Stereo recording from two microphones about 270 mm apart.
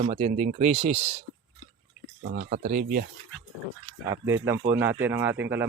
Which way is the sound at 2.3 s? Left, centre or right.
Right.